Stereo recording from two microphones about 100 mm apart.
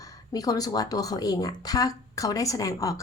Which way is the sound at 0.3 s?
40° left (ahead or behind).